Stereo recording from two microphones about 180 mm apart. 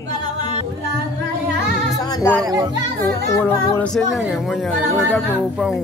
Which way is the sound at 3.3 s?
15° left (ahead or behind).